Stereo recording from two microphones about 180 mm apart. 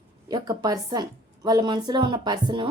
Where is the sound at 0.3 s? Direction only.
25° right (ahead or behind).